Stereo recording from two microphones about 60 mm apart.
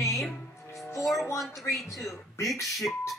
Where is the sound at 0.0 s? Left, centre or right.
Centre.